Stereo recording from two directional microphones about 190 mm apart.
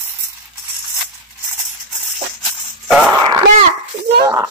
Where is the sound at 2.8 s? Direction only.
5° right (ahead or behind).